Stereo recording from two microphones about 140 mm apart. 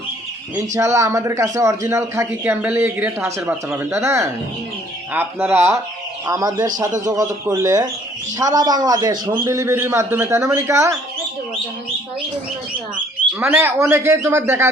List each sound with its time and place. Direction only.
0.5 s a man's voice: 20° right (ahead or behind)
13.4 s speech: 10° right (ahead or behind)